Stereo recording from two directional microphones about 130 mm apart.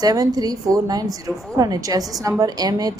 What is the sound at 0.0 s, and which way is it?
A woman's voice, 30° right (ahead or behind).